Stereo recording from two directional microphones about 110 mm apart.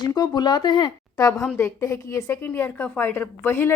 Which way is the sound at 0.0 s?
40° left (ahead or behind).